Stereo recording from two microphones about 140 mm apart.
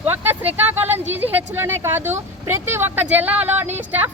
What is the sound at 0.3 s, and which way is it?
A woman's voice, 15° right (ahead or behind).